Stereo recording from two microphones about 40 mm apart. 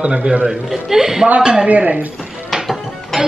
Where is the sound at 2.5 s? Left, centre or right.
Centre.